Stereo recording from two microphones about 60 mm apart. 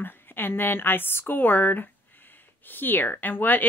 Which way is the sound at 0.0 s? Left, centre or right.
Left.